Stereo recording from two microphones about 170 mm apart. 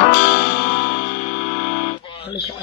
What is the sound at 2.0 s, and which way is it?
Guitar, 30° left (ahead or behind).